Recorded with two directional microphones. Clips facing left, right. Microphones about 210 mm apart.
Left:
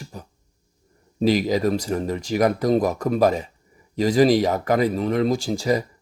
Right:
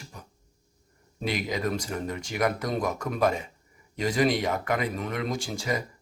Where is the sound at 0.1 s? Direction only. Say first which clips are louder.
Left 9 dB; 35° left (ahead or behind).